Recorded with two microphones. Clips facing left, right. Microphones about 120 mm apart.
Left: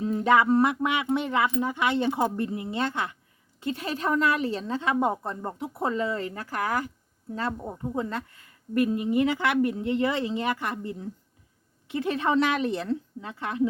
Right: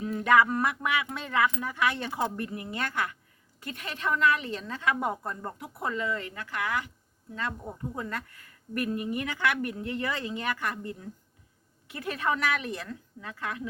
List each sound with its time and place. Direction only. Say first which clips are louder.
0.0 s a woman's voice: left 2 dB; 25° left (ahead or behind)